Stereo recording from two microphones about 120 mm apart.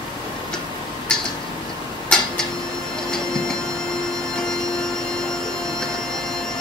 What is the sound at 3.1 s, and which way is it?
Train, 5° left (ahead or behind).